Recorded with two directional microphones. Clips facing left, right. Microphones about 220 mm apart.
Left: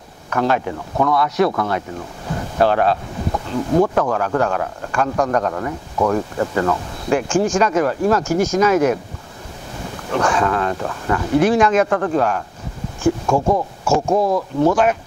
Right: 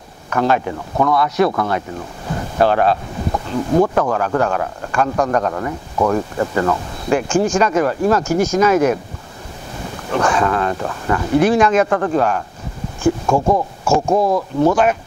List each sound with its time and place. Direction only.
0.3 s speech: 20° right (ahead or behind)
3.3 s speech: 30° right (ahead or behind)
10.1 s speech: 25° right (ahead or behind)
11.4 s speech: 10° right (ahead or behind); by 14.8 s 30° right (ahead or behind)